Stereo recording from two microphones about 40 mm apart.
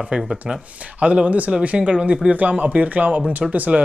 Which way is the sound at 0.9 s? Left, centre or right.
Right.